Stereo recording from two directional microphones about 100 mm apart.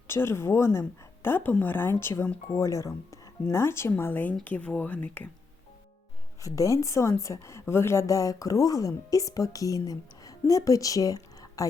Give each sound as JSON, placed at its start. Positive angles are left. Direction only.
{"t": 0.1, "sound": "a woman's voice", "side_deg": 25}
{"t": 6.4, "sound": "a woman's voice", "side_deg": 35}